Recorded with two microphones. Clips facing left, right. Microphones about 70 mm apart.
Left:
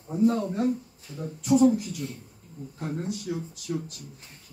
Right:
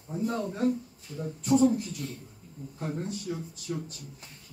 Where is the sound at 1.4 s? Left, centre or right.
Centre.